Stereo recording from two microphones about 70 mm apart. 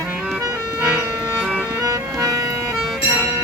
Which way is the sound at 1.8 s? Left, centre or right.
Right.